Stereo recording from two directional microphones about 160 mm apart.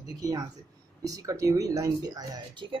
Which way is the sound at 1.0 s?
20° right (ahead or behind).